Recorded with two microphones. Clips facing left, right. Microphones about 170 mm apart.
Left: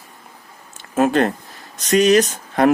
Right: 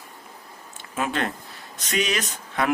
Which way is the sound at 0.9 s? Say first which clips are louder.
Left 10 dB; 45° left (ahead or behind).